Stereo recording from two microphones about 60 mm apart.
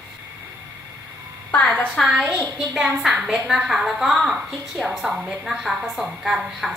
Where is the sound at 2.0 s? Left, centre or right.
Centre.